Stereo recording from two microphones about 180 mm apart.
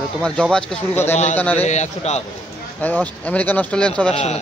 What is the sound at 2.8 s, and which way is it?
Speech, 10° left (ahead or behind).